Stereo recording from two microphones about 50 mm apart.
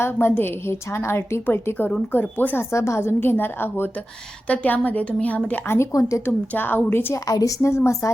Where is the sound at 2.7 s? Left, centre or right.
Left.